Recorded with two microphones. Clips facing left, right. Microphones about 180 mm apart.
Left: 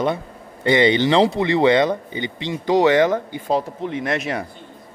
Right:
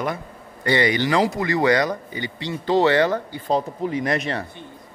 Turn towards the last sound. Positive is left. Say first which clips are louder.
# even
turn(degrees=5)  # may be behind; listen again after turning